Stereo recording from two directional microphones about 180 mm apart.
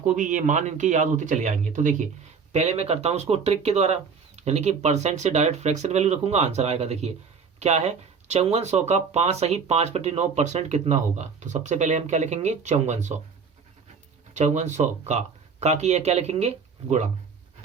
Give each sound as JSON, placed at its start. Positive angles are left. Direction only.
{"t": 0.0, "sound": "speech", "side_deg": -45}
{"t": 14.3, "sound": "speech", "side_deg": -40}